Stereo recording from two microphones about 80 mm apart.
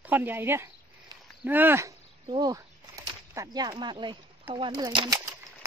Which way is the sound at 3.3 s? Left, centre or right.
Right.